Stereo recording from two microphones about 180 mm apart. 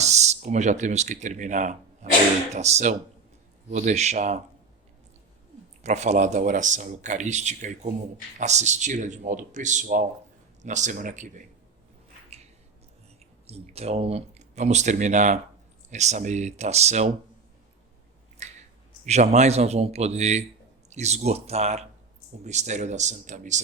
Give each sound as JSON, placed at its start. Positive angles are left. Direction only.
{"t": 0.0, "sound": "speech", "side_deg": -40}
{"t": 5.8, "sound": "speech", "side_deg": -40}
{"t": 13.5, "sound": "speech", "side_deg": -35}
{"t": 18.4, "sound": "a sound", "side_deg": -40}
{"t": 19.0, "sound": "speech", "side_deg": -40}